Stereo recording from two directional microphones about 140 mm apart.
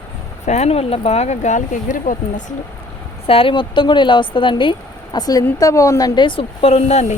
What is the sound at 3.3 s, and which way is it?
A woman's voice, 40° left (ahead or behind).